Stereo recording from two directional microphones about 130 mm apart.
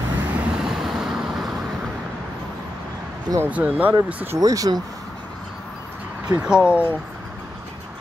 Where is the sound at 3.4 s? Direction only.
10° right (ahead or behind).